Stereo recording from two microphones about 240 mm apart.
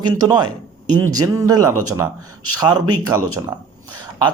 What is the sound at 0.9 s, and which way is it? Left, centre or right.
Speech, right.